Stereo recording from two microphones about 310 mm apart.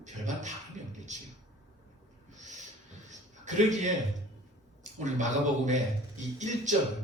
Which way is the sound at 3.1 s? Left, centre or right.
Right.